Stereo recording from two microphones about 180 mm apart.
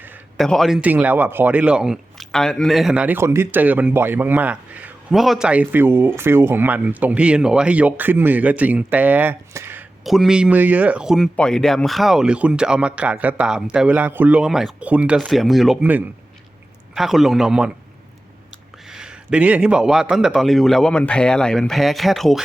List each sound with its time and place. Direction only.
0.3 s speech: centre (ahead or behind); by 9.8 s 15° right (ahead or behind)
10.0 s speech: centre (ahead or behind)
18.9 s speech: 5° right (ahead or behind)